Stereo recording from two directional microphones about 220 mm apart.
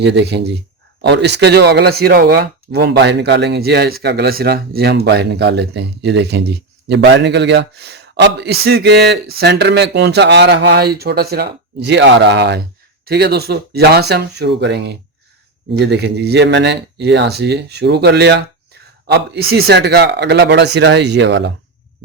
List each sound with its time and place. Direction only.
0.0 s speech: 50° right (ahead or behind)